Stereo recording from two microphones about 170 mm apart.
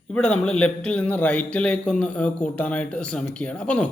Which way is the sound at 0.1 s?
5° left (ahead or behind).